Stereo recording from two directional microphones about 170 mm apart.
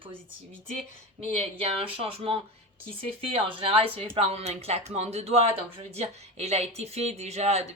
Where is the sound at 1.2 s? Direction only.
35° right (ahead or behind).